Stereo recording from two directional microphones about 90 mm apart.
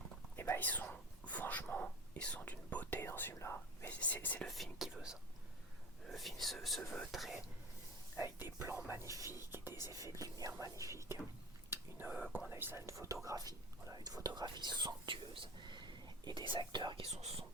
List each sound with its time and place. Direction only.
0.3 s speech: 25° left (ahead or behind)
4.4 s speech: centre (ahead or behind)
8.1 s speech: 25° right (ahead or behind)
9.4 s speech: 25° right (ahead or behind)
10.2 s speech: 40° right (ahead or behind)
11.7 s whispering: 25° right (ahead or behind)
12.5 s speech: 25° right (ahead or behind); by 17.0 s 60° right (ahead or behind)